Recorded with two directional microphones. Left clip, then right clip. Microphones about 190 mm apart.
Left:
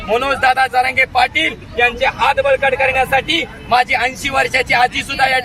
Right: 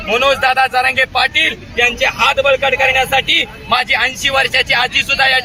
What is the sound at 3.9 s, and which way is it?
A man's voice, 20° left (ahead or behind).